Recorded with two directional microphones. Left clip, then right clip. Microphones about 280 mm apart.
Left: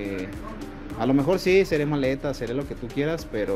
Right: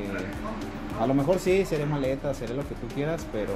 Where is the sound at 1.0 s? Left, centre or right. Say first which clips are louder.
Left 2 dB; left.